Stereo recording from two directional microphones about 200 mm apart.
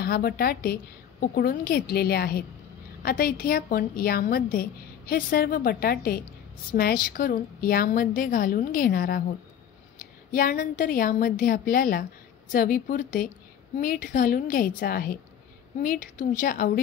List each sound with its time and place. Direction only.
0.0 s a woman's voice: 50° left (ahead or behind)
10.3 s a woman's voice: 45° left (ahead or behind)